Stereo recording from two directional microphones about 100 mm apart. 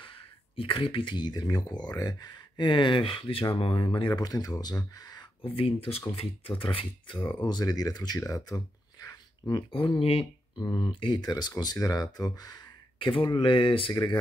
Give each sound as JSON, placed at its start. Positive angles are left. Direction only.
{"t": 0.0, "sound": "speech", "side_deg": 60}
{"t": 5.4, "sound": "speech", "side_deg": 65}
{"t": 7.4, "sound": "speech", "side_deg": 40}
{"t": 9.7, "sound": "speech", "side_deg": 60}
{"t": 10.6, "sound": "speech", "side_deg": 55}